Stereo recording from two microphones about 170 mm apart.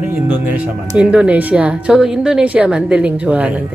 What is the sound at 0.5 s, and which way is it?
Speech, 10° right (ahead or behind).